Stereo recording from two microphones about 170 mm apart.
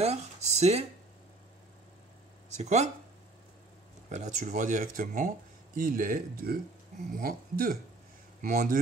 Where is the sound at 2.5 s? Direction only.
40° right (ahead or behind).